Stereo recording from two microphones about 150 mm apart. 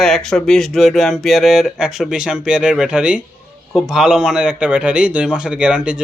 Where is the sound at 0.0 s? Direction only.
5° left (ahead or behind).